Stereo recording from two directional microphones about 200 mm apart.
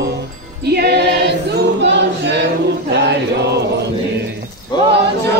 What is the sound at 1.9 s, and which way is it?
Choir, 60° right (ahead or behind).